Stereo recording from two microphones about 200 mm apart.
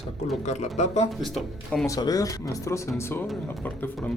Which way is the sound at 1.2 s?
Centre (ahead or behind).